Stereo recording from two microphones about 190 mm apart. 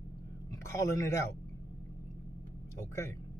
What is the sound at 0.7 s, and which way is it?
Speech, 15° left (ahead or behind).